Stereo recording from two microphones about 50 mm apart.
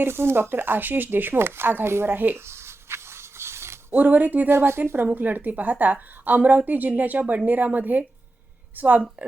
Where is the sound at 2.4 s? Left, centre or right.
Right.